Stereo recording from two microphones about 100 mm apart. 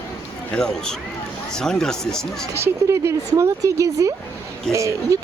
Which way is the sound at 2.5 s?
30° right (ahead or behind).